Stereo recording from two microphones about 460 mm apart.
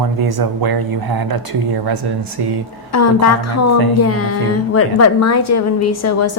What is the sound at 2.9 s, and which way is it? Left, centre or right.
A woman's voice, left.